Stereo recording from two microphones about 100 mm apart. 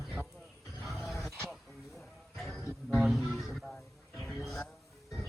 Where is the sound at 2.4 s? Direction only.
Centre (ahead or behind).